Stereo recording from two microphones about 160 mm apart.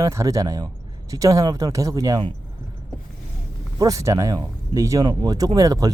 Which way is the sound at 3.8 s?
20° right (ahead or behind).